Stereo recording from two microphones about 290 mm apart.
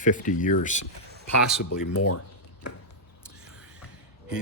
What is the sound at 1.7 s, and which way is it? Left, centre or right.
Speech, left.